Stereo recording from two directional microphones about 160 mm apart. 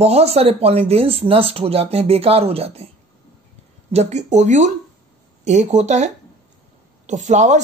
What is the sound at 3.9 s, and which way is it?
Speech, 45° right (ahead or behind).